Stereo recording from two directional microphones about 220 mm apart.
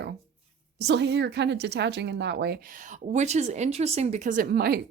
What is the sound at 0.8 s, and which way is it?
A woman's voice, 50° right (ahead or behind).